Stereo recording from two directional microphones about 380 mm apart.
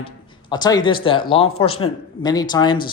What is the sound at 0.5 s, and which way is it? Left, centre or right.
A man's voice, centre.